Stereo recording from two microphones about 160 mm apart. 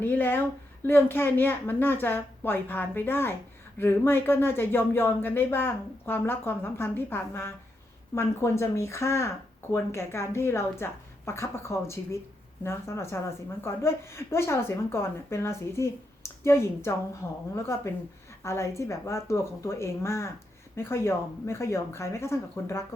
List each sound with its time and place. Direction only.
0.0 s a woman's voice: 10° left (ahead or behind)